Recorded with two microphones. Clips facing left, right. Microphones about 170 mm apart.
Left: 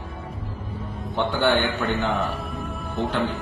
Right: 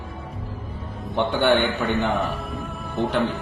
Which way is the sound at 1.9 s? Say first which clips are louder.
Right 2 dB; 20° right (ahead or behind).